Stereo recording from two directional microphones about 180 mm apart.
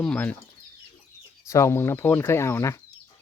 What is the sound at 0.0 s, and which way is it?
Speech, 5° left (ahead or behind).